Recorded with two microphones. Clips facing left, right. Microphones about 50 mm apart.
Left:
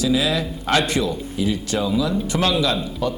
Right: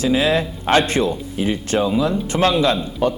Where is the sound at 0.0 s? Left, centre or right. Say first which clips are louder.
Right 3 dB; right.